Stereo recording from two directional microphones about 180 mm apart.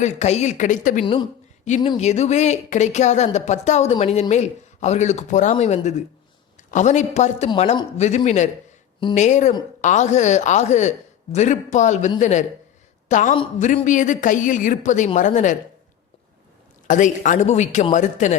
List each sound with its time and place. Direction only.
0.0 s a woman's voice: 40° left (ahead or behind)
1.0 s a woman's voice: 25° left (ahead or behind)
1.7 s a woman's voice: 40° left (ahead or behind)
16.8 s a woman's voice: 45° left (ahead or behind)